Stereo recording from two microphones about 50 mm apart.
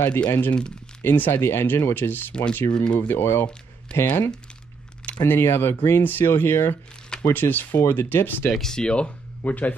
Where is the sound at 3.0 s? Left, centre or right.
Left.